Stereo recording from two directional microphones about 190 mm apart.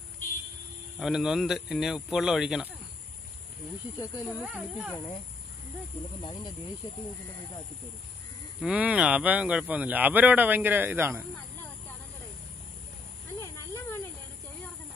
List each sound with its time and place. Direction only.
0.9 s speech: centre (ahead or behind)
4.0 s speech: 20° left (ahead or behind)
4.4 s speech: 5° right (ahead or behind)
6.2 s speech: 25° left (ahead or behind)
8.5 s speech: 5° right (ahead or behind)
13.4 s snake: 15° left (ahead or behind)